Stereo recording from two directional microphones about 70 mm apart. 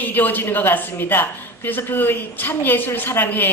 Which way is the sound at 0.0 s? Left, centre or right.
Left.